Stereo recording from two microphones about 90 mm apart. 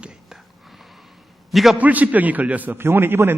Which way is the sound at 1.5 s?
Centre (ahead or behind).